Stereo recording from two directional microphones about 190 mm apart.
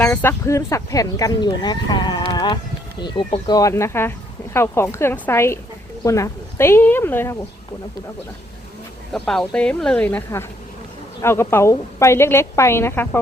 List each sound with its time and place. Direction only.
0.0 s a woman's voice: 10° left (ahead or behind)
9.1 s a woman's voice: 5° left (ahead or behind)